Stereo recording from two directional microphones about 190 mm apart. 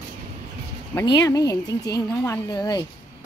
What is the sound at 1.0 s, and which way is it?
A woman's voice, 20° left (ahead or behind).